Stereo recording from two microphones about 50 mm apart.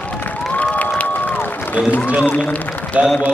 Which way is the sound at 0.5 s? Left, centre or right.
Left.